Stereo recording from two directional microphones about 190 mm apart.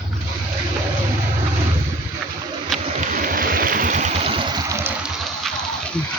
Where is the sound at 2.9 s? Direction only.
45° right (ahead or behind); by 5.5 s 5° right (ahead or behind).